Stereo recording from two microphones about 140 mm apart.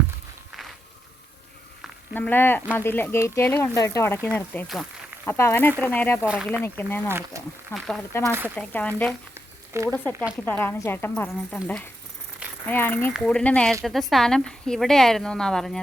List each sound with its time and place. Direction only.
2.1 s speech: 15° left (ahead or behind)
6.2 s a woman's voice: 5° right (ahead or behind)
6.5 s speech: 15° left (ahead or behind)
7.1 s speech: 20° right (ahead or behind)
7.7 s a woman's voice: centre (ahead or behind)
8.2 s speech: 15° right (ahead or behind)
8.5 s speech: 10° left (ahead or behind)
12.6 s a woman's voice: 15° left (ahead or behind)